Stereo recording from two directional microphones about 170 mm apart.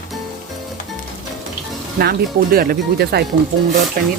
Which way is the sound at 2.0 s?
65° right (ahead or behind).